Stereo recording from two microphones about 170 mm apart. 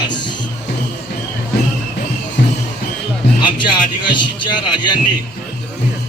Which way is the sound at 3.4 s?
25° left (ahead or behind).